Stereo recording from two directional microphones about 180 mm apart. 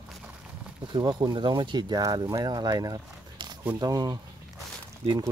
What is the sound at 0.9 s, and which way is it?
Speech, 25° right (ahead or behind).